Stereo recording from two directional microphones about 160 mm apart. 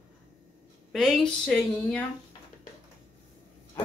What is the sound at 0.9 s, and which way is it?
A woman's voice, centre (ahead or behind).